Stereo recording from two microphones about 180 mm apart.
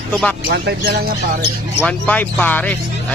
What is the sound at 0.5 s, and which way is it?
Speech, 65° right (ahead or behind).